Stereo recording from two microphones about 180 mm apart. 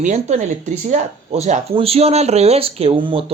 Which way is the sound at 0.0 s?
40° right (ahead or behind).